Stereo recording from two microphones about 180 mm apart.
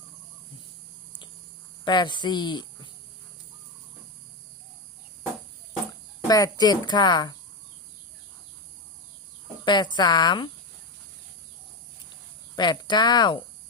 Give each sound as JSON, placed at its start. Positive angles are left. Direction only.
{"t": 1.8, "sound": "speech", "side_deg": 25}
{"t": 6.2, "sound": "speech", "side_deg": 20}
{"t": 9.6, "sound": "speech", "side_deg": 25}
{"t": 12.5, "sound": "speech", "side_deg": 25}